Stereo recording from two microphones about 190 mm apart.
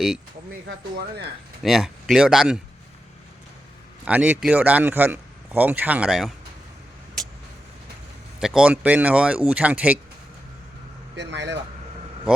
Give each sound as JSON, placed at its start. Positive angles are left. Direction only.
{"t": 0.9, "sound": "speech", "side_deg": -60}
{"t": 1.6, "sound": "speech", "side_deg": 0}
{"t": 4.0, "sound": "speech", "side_deg": -10}
{"t": 8.4, "sound": "speech", "side_deg": -5}
{"t": 11.2, "sound": "speech", "side_deg": -65}